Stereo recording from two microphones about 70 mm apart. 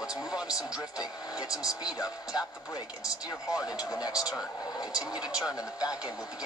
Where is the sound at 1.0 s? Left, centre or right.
Left.